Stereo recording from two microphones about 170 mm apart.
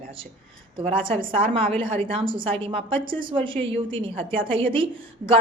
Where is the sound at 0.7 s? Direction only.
30° right (ahead or behind).